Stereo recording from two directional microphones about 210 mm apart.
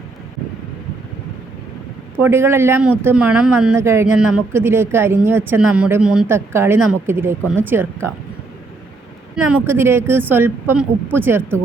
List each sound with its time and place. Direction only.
2.1 s speech: 10° right (ahead or behind)
9.3 s speech: 5° right (ahead or behind)